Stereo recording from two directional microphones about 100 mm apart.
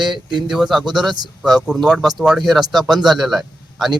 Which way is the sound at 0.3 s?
50° right (ahead or behind).